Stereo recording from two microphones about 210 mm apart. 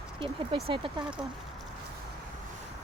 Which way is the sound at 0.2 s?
25° right (ahead or behind).